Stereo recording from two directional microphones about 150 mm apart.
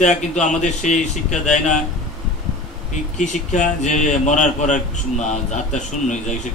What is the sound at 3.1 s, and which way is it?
A man's voice, 55° left (ahead or behind).